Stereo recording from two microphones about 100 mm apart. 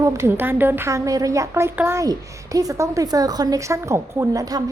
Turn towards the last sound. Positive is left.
turn(degrees=-35)  # may be behind; listen again after turning